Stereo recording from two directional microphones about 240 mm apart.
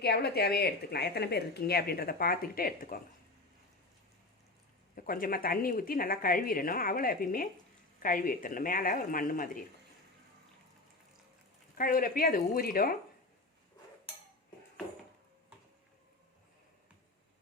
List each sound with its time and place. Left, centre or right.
0.0 s a woman's voice: left
4.9 s a woman's voice: left
11.8 s a woman's voice: left